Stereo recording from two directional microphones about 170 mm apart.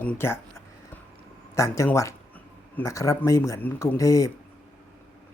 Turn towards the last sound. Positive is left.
turn(degrees=20)  # may be behind; listen again after turning